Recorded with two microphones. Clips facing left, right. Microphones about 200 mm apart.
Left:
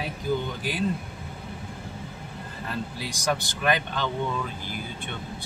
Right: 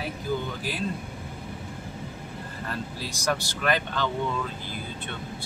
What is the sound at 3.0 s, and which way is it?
Speech, 15° left (ahead or behind).